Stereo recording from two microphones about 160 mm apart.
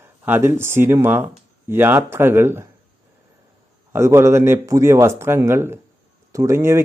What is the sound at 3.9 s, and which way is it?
Speech, 15° right (ahead or behind).